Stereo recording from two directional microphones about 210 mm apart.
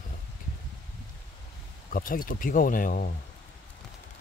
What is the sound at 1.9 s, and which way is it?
Speech, 45° left (ahead or behind).